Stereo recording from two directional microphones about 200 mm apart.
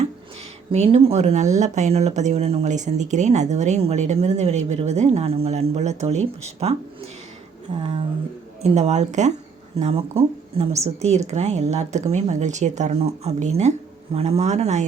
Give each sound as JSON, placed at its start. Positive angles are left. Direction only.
{"t": 0.7, "sound": "speech", "side_deg": -30}